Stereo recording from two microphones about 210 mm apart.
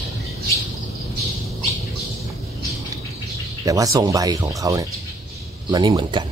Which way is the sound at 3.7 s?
15° right (ahead or behind).